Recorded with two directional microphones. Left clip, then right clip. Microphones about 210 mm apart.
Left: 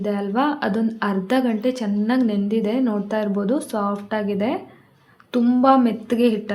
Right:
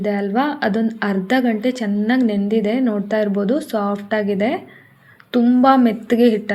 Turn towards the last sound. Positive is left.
turn(degrees=-10)  # may be behind; listen again after turning